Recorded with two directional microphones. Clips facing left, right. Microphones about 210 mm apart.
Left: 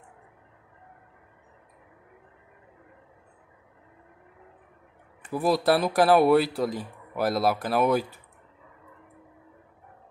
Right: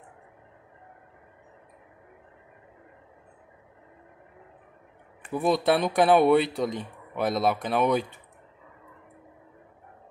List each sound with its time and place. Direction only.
5.3 s speech: centre (ahead or behind)